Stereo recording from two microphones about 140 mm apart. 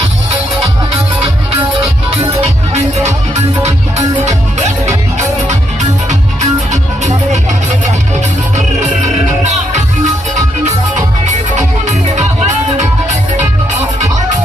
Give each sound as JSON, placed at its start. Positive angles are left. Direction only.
{"t": 3.3, "sound": "music", "side_deg": -50}
{"t": 6.1, "sound": "music", "side_deg": -55}
{"t": 9.4, "sound": "music", "side_deg": -55}
{"t": 11.5, "sound": "music", "side_deg": -55}